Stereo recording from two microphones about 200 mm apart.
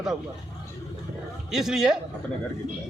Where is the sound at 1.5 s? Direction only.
Centre (ahead or behind).